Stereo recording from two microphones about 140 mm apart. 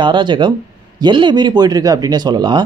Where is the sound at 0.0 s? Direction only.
35° right (ahead or behind).